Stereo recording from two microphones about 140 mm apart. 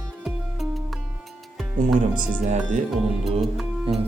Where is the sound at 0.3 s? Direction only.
Centre (ahead or behind).